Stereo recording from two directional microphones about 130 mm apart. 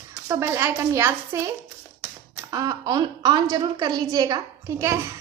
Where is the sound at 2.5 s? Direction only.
30° right (ahead or behind).